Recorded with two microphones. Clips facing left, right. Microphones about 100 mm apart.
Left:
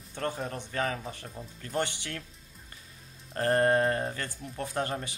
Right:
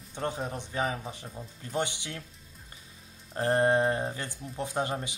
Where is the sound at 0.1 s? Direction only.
15° right (ahead or behind).